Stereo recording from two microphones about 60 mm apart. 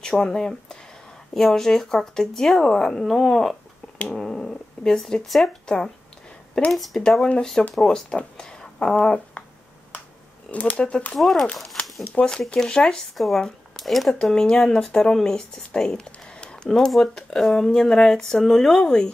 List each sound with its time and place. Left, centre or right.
0.0 s speech: centre
6.7 s speech: centre
10.5 s speech: left
11.1 s speech: centre
12.3 s speech: centre